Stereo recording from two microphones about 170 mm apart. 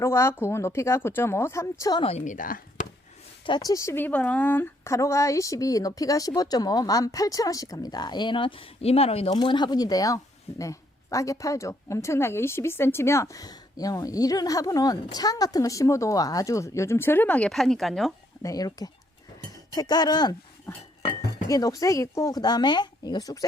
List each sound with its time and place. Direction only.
0.0 s a woman's voice: 15° left (ahead or behind)
2.0 s speech: 45° left (ahead or behind)
3.4 s a woman's voice: 25° left (ahead or behind); by 18.1 s centre (ahead or behind)
18.4 s speech: 20° left (ahead or behind)